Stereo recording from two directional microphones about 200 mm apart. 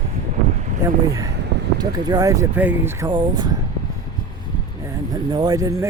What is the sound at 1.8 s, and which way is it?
Speech, 20° right (ahead or behind).